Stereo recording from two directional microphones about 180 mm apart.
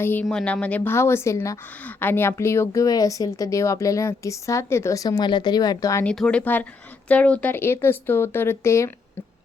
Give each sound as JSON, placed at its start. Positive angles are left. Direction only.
{"t": 0.0, "sound": "a woman's voice", "side_deg": 10}
{"t": 6.1, "sound": "a woman's voice", "side_deg": 5}